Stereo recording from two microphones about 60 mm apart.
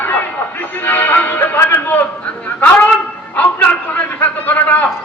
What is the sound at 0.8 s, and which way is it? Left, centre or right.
Music, left.